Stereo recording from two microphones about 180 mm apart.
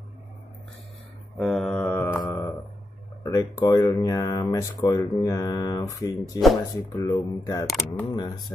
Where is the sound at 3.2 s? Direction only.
20° left (ahead or behind).